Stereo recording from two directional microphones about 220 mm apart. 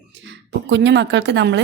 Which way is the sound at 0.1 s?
55° right (ahead or behind).